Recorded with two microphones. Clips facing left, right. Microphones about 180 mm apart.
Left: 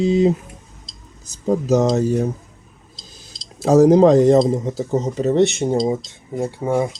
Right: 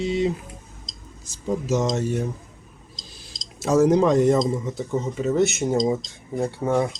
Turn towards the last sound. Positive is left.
turn(degrees=10)  # may be behind; listen again after turning